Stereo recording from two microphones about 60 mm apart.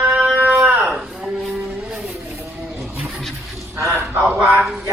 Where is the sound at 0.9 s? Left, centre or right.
Centre.